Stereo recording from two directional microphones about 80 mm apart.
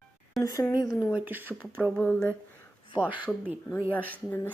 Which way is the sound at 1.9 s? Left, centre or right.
Centre.